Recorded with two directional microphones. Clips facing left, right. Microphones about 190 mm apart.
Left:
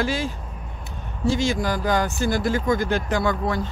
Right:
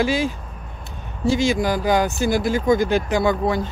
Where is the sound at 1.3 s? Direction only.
10° right (ahead or behind).